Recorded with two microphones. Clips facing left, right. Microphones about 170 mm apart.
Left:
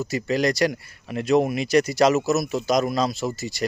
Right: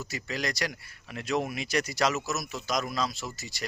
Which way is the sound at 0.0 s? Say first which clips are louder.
Left 11 dB; 40° left (ahead or behind).